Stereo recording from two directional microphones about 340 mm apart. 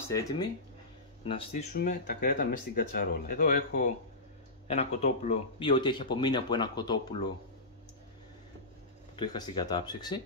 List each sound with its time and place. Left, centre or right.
0.1 s speech: centre
9.1 s speech: centre